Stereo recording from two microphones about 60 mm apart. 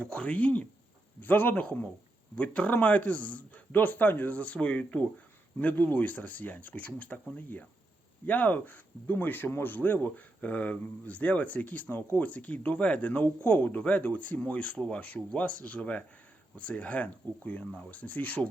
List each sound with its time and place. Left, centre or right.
0.0 s speech: left